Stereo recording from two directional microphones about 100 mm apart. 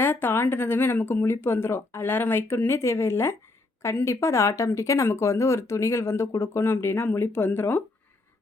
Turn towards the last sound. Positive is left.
turn(degrees=20)  # may be behind; listen again after turning